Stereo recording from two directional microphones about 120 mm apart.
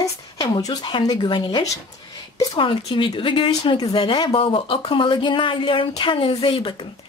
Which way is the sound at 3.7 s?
30° left (ahead or behind).